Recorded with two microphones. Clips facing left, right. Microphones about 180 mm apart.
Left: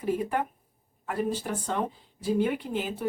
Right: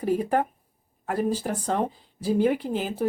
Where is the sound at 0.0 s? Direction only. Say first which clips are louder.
Right 4 dB; 40° right (ahead or behind).